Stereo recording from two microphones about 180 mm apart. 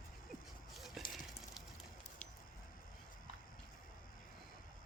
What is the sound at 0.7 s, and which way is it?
Clip-clop, centre (ahead or behind).